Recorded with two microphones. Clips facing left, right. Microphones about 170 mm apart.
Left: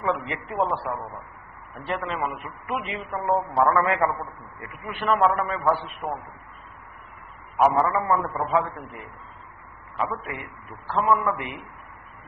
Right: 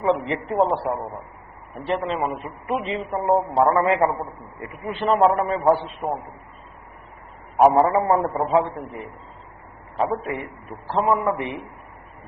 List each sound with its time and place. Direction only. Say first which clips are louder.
0.0 s a man's voice: right 5 dB; 30° right (ahead or behind)
7.5 s a man's voice: right 5 dB; 35° right (ahead or behind)